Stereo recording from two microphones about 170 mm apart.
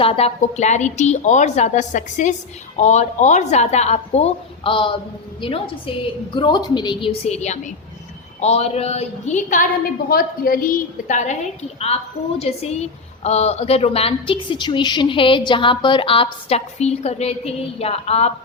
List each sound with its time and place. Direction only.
0.0 s a woman's voice: 35° left (ahead or behind)
10.1 s a woman's voice: 60° left (ahead or behind); by 11.3 s 45° left (ahead or behind)
12.4 s a woman's voice: 40° left (ahead or behind)